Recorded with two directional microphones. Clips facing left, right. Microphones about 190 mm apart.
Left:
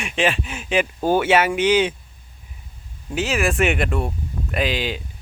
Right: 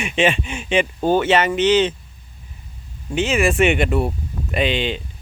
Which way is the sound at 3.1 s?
Centre (ahead or behind).